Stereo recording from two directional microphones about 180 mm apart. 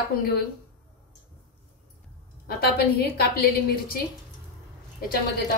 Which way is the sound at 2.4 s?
60° left (ahead or behind).